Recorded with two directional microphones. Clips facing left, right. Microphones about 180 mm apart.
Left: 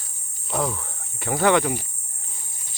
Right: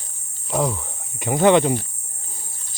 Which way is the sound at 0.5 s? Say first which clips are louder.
Right 4 dB; 15° right (ahead or behind).